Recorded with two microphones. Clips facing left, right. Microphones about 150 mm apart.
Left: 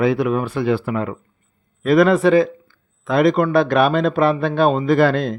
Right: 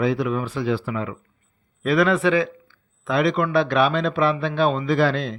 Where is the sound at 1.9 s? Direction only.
45° left (ahead or behind).